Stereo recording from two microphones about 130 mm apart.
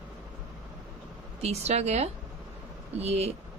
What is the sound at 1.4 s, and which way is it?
Speech, 55° right (ahead or behind).